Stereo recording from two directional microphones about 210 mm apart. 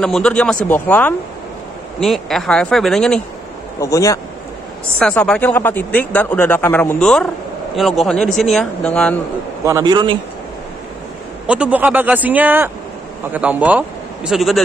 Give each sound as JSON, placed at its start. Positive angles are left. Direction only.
{"t": 0.0, "sound": "a man's voice", "side_deg": 5}
{"t": 3.8, "sound": "a man's voice", "side_deg": 15}
{"t": 9.7, "sound": "speech", "side_deg": -15}
{"t": 11.4, "sound": "a man's voice", "side_deg": -5}